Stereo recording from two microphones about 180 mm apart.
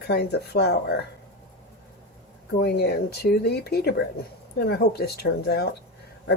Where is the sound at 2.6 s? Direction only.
60° left (ahead or behind).